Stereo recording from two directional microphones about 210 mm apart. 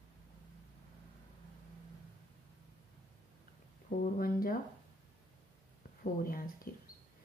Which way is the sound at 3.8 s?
45° left (ahead or behind).